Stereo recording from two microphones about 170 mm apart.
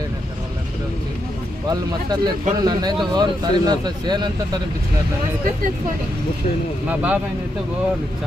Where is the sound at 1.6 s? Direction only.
25° right (ahead or behind).